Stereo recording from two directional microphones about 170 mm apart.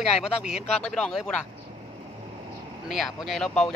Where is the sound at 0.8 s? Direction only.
5° left (ahead or behind).